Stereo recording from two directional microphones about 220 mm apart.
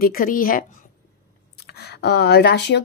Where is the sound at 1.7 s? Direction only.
50° left (ahead or behind).